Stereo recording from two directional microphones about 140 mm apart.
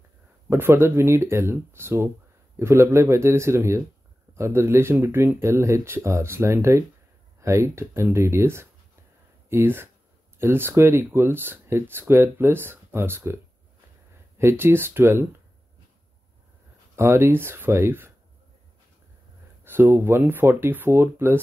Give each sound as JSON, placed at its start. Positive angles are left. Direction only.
{"t": 0.5, "sound": "speech", "side_deg": -15}
{"t": 14.4, "sound": "speech", "side_deg": -15}
{"t": 16.9, "sound": "speech", "side_deg": -20}
{"t": 19.6, "sound": "speech", "side_deg": -15}